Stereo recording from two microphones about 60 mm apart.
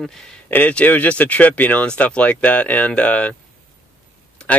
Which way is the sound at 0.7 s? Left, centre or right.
Left.